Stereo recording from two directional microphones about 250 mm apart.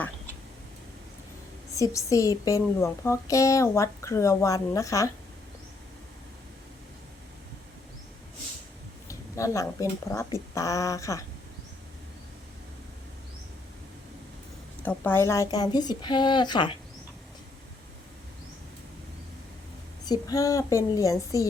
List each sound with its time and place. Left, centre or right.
1.7 s speech: centre
9.0 s a sound: centre
10.1 s speech: centre
14.8 s speech: centre
20.1 s speech: centre